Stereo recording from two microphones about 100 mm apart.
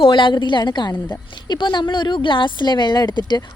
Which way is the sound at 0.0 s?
55° left (ahead or behind).